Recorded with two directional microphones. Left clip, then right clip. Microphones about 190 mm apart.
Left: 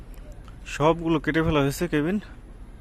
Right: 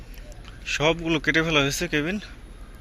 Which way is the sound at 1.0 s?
30° left (ahead or behind).